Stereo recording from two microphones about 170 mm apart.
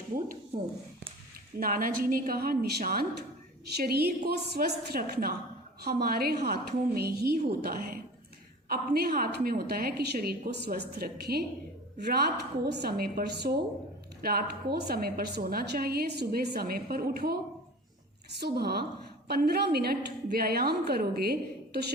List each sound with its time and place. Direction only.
1.5 s a woman's voice: 55° right (ahead or behind)
18.3 s a woman's voice: 75° right (ahead or behind)